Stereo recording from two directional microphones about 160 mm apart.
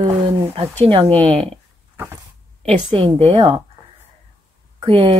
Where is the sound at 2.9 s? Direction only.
35° right (ahead or behind).